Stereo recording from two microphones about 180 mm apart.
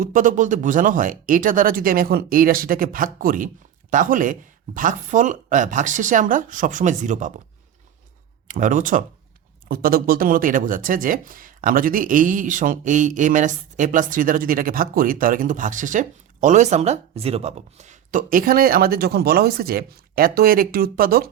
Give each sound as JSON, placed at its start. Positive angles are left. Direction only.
{"t": 0.0, "sound": "speech", "side_deg": -50}
{"t": 8.4, "sound": "speech", "side_deg": -45}